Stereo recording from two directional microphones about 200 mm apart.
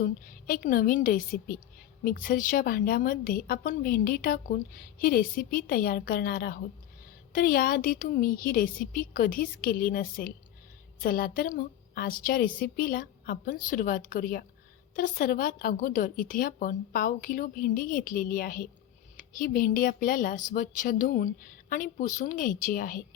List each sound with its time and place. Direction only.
0.0 s a woman's voice: 45° left (ahead or behind)